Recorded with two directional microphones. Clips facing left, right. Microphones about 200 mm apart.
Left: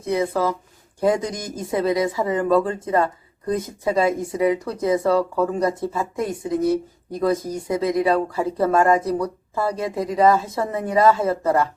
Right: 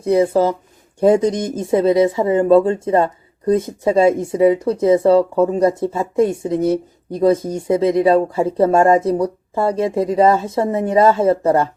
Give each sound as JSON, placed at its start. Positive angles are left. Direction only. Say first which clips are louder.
{"t": 0.0, "sound": "speech", "louder": "right 7 dB", "side_deg": -30}